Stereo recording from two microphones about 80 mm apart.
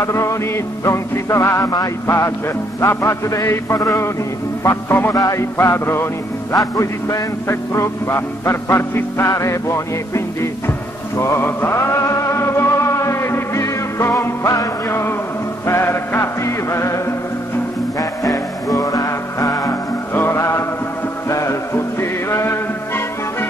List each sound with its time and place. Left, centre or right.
0.0 s music: left
5.1 s music: left
6.5 s music: left
18.2 s music: left
20.2 s music: left
22.3 s a sound: left